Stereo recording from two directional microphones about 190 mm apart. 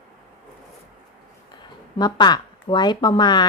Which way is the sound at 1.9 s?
20° left (ahead or behind).